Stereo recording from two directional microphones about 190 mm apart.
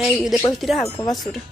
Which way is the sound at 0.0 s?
5° right (ahead or behind).